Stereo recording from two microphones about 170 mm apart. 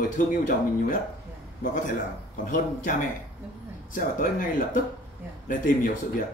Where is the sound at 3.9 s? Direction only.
50° left (ahead or behind).